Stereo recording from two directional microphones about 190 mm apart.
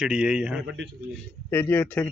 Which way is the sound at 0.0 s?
5° right (ahead or behind).